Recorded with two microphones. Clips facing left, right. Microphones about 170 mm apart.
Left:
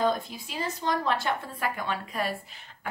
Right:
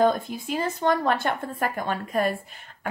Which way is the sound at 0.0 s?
50° right (ahead or behind).